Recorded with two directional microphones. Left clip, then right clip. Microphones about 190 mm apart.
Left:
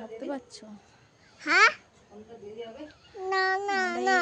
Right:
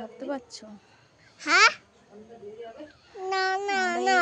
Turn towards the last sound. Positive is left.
turn(degrees=-35)  # may be behind; listen again after turning